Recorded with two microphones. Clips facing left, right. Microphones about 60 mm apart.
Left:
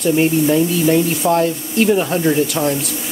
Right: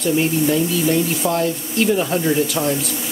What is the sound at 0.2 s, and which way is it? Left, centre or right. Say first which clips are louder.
Speech: left 4 dB; centre.